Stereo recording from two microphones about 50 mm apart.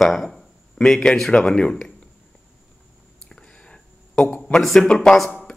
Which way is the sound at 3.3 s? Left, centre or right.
Centre.